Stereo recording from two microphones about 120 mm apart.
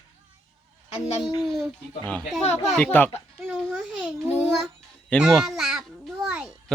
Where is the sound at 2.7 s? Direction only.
10° left (ahead or behind).